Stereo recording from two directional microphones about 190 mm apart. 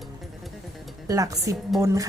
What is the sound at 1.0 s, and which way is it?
A woman's voice, 15° right (ahead or behind).